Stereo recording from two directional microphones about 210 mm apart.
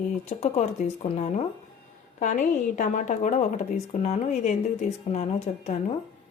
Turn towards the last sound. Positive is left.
turn(degrees=35)  # may be behind; listen again after turning